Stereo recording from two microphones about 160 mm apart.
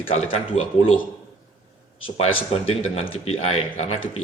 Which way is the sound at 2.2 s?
40° left (ahead or behind).